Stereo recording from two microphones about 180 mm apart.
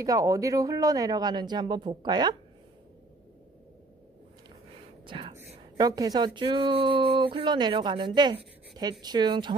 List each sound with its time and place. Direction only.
0.0 s speech: 20° right (ahead or behind)
5.0 s whispering: 25° right (ahead or behind)
5.8 s speech: 20° right (ahead or behind)